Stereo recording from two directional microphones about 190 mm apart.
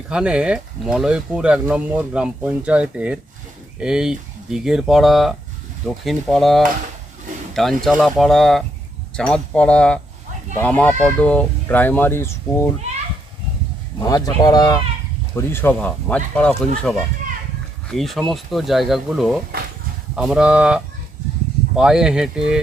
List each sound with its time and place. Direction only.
0.1 s speech: 5° right (ahead or behind); by 12.7 s 15° left (ahead or behind)
14.0 s speech: 20° left (ahead or behind)
17.2 s a sound: 45° right (ahead or behind)
17.9 s speech: centre (ahead or behind)